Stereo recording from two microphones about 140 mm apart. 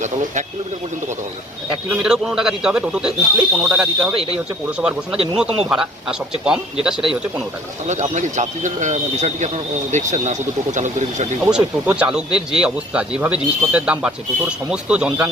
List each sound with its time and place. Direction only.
1.9 s a man's voice: 5° right (ahead or behind)
4.1 s speech: 40° right (ahead or behind)
4.8 s a man's voice: 5° right (ahead or behind)
7.9 s speech: 60° right (ahead or behind)
11.4 s speech: 10° right (ahead or behind)